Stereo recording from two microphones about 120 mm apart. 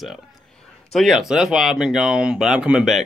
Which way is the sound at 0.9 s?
Centre (ahead or behind).